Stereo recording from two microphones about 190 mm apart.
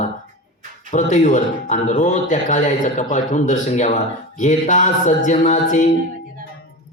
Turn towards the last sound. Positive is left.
turn(degrees=40)  # may be behind; listen again after turning